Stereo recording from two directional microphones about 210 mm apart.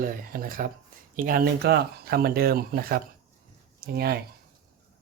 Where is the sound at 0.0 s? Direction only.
40° right (ahead or behind).